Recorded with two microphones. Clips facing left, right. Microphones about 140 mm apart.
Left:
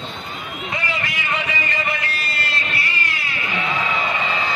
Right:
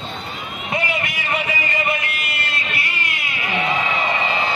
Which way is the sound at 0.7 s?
25° right (ahead or behind).